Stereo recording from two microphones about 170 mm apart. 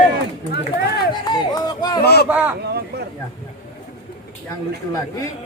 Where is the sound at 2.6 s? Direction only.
70° right (ahead or behind).